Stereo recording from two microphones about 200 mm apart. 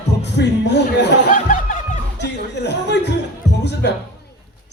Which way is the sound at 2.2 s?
60° left (ahead or behind).